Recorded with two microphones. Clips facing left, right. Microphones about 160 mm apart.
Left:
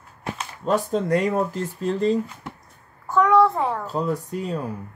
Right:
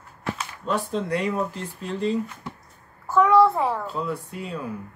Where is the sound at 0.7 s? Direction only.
45° left (ahead or behind).